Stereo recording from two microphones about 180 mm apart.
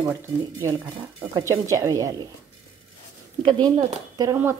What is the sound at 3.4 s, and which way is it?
Speech, 25° right (ahead or behind).